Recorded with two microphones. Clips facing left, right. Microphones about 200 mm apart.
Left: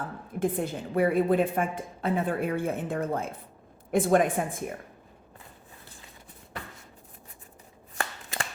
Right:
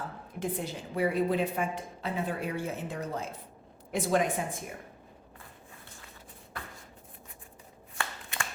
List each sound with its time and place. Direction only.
0.3 s a woman's voice: 55° left (ahead or behind)
7.9 s shuffling cards: 35° left (ahead or behind)